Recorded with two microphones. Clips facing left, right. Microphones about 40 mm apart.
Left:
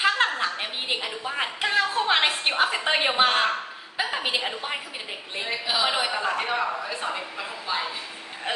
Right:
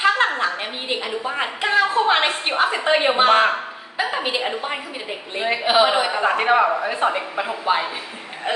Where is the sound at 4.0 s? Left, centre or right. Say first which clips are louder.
Right 5 dB; centre.